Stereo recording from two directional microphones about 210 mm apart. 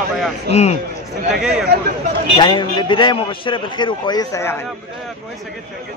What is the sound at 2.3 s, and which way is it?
A man's voice, 20° left (ahead or behind).